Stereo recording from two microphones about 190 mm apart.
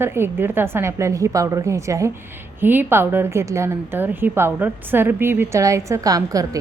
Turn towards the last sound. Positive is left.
turn(degrees=-20)  # may be behind; listen again after turning